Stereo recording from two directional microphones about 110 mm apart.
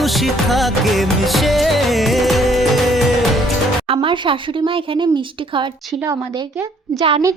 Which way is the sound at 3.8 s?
55° right (ahead or behind).